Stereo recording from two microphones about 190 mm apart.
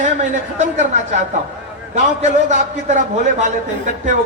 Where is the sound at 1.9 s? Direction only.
40° right (ahead or behind).